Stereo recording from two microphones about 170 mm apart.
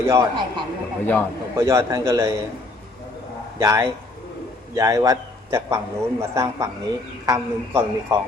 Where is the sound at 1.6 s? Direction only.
15° right (ahead or behind).